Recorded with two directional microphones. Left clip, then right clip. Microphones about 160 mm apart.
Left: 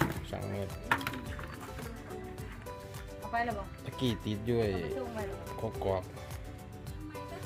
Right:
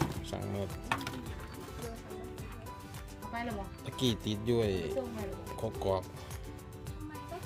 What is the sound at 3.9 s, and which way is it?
Speech, 15° right (ahead or behind).